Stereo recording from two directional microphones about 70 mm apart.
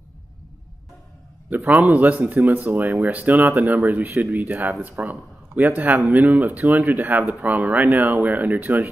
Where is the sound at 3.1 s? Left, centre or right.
Right.